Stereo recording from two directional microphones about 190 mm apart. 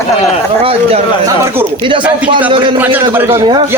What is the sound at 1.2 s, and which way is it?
Speech, 15° right (ahead or behind).